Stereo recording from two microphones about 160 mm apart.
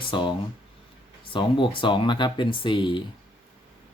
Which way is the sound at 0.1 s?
30° left (ahead or behind).